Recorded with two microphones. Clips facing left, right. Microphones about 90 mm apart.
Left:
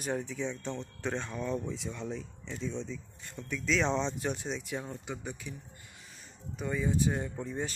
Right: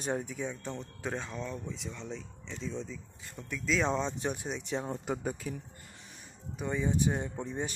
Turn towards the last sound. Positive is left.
turn(degrees=-20)  # may be behind; listen again after turning